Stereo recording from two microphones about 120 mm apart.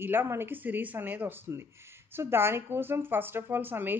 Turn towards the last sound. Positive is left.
turn(degrees=-15)  # may be behind; listen again after turning